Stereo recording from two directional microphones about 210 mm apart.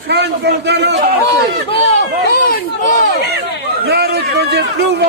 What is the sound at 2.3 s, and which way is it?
Speech, 45° left (ahead or behind).